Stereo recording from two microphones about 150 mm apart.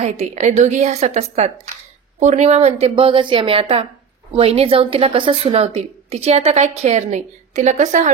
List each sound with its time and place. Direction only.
0.0 s a woman's voice: 50° right (ahead or behind)